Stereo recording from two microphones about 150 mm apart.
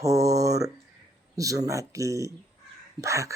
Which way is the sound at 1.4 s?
20° right (ahead or behind).